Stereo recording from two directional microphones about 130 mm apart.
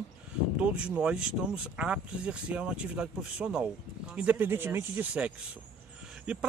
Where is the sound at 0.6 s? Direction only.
10° right (ahead or behind).